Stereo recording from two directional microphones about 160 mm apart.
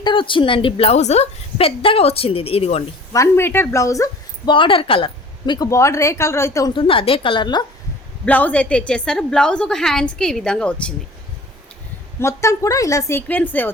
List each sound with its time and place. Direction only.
0.0 s a woman's voice: 30° left (ahead or behind)
3.1 s speech: 15° left (ahead or behind)
4.5 s a woman's voice: 30° left (ahead or behind)
6.7 s a woman's voice: 35° left (ahead or behind)
8.2 s a woman's voice: 10° left (ahead or behind)
12.2 s a woman's voice: 20° left (ahead or behind)